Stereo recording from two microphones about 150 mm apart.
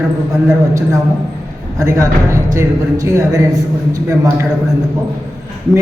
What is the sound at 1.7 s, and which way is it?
A man's voice, 20° right (ahead or behind).